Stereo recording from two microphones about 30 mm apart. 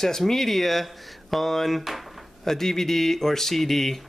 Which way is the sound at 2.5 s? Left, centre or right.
Centre.